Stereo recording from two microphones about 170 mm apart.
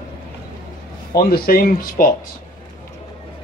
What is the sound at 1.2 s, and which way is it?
Speech, 60° left (ahead or behind).